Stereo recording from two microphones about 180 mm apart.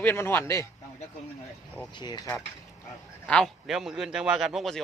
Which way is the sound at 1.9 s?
25° left (ahead or behind).